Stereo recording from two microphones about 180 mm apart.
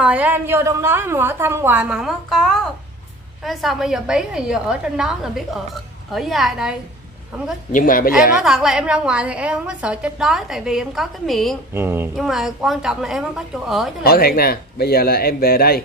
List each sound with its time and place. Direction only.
0.0 s a woman's voice: 10° right (ahead or behind)
7.7 s a woman's voice: 50° left (ahead or behind)
8.4 s a woman's voice: centre (ahead or behind)
11.7 s a woman's voice: 15° right (ahead or behind)
12.2 s a woman's voice: centre (ahead or behind)
14.0 s speech: 55° left (ahead or behind)